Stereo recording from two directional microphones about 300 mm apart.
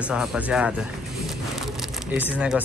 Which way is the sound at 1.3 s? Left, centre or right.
Centre.